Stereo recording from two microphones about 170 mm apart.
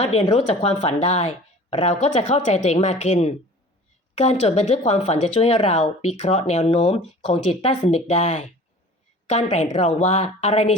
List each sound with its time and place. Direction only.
0.0 s speech: 40° left (ahead or behind)